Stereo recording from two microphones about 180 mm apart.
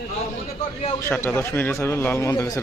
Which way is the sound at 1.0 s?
15° left (ahead or behind).